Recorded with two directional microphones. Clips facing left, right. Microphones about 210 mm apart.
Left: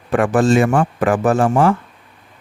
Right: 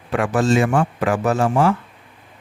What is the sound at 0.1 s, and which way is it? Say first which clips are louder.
Speech: left 4 dB; 50° left (ahead or behind).